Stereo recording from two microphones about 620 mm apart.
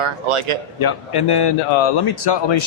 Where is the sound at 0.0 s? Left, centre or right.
Right.